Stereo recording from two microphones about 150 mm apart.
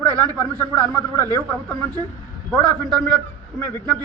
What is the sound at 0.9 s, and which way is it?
Speech, 10° left (ahead or behind).